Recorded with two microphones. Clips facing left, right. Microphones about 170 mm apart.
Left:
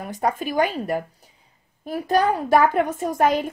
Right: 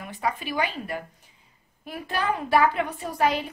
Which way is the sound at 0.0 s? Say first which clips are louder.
Left 5 dB; 40° left (ahead or behind).